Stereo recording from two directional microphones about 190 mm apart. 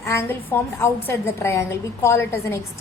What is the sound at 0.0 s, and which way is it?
A woman's voice, 15° left (ahead or behind).